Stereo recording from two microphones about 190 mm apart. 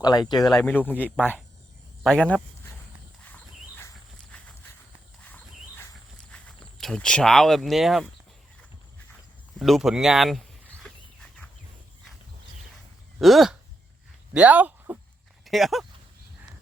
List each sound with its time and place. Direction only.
0.0 s speech: 20° left (ahead or behind)
0.5 s speech: 5° left (ahead or behind)
3.2 s horse: 10° left (ahead or behind)
6.3 s speech: 5° left (ahead or behind)
9.6 s speech: centre (ahead or behind)
10.8 s livestock: centre (ahead or behind)
13.1 s speech: centre (ahead or behind)